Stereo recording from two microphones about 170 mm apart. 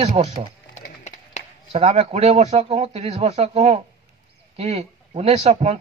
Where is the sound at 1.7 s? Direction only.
40° right (ahead or behind).